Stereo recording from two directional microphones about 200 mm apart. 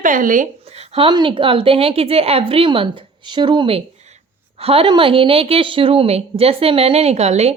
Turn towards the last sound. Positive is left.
turn(degrees=-30)  # may be behind; listen again after turning